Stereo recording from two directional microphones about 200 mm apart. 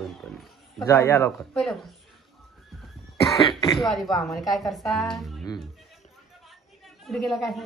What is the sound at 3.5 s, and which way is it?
Throat clearing, 25° left (ahead or behind).